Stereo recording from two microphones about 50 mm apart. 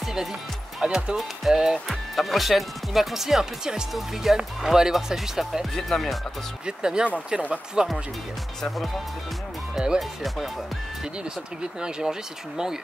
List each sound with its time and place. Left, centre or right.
0.8 s speech: centre
1.1 s speech: centre
1.9 s speech: centre
5.8 s speech: centre
6.6 s speech: centre
8.6 s speech: centre
9.9 s speech: centre
11.8 s speech: centre